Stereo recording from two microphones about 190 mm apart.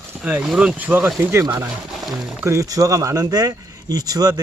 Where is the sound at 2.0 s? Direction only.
Centre (ahead or behind).